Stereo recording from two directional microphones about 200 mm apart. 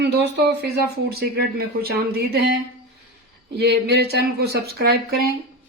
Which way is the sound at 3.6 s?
55° right (ahead or behind).